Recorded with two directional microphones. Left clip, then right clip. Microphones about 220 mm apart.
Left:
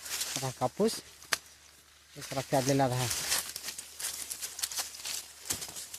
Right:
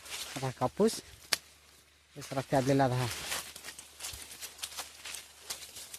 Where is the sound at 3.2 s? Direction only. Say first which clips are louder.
Left 5 dB; 45° left (ahead or behind).